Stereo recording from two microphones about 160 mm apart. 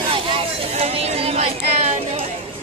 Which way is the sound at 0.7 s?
40° right (ahead or behind).